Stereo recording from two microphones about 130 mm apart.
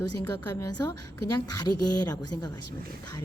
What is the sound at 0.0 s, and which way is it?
A woman's voice, 30° left (ahead or behind).